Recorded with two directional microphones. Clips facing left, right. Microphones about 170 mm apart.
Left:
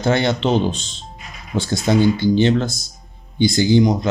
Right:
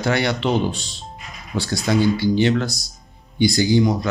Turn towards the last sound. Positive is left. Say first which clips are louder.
# left 2 dB
turn(degrees=20)  # may be behind; listen again after turning